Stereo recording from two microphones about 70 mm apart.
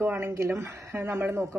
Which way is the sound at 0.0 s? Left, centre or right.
Right.